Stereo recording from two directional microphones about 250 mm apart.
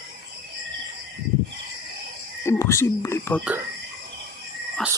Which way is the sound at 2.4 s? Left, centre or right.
Centre.